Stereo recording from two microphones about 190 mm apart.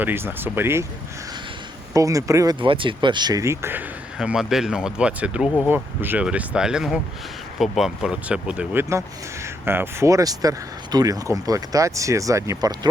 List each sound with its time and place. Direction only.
0.0 s speech: 10° right (ahead or behind)
1.9 s speech: 15° right (ahead or behind)